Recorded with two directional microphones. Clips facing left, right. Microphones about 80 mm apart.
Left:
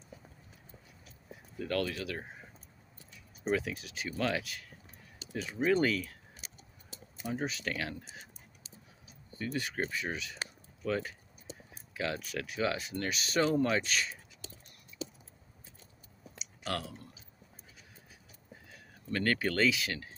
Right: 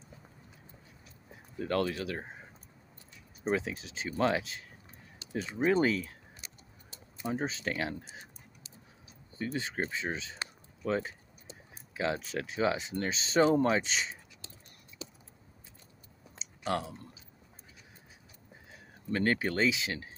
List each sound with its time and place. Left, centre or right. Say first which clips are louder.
1.6 s speech: right 3 dB; right
3.4 s speech: right 1 dB; right
7.2 s speech: right 2 dB; right
9.4 s speech: right 1 dB; right
16.3 s chewing: right 4 dB; right
18.7 s speech: right 3 dB; right